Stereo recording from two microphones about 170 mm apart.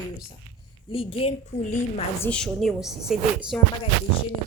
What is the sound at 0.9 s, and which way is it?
Speech, 35° left (ahead or behind).